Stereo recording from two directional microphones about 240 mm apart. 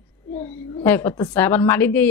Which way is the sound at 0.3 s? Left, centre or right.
Centre.